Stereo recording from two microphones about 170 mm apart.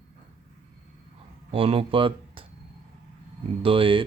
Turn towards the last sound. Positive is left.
turn(degrees=-30)  # may be behind; listen again after turning